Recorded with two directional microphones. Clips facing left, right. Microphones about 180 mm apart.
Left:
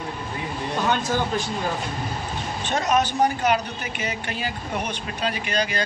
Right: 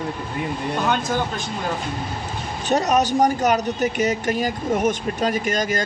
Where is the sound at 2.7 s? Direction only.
40° right (ahead or behind).